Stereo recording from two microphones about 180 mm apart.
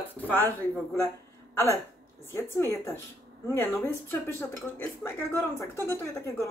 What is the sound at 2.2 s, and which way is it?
Speech, 15° left (ahead or behind).